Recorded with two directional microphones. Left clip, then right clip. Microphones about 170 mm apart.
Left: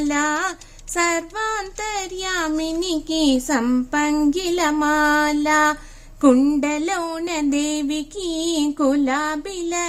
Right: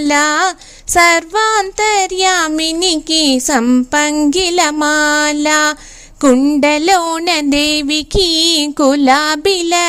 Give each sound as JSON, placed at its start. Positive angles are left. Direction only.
{"t": 0.0, "sound": "child singing", "side_deg": -45}
{"t": 6.3, "sound": "a sound", "side_deg": -30}
{"t": 6.6, "sound": "child singing", "side_deg": -45}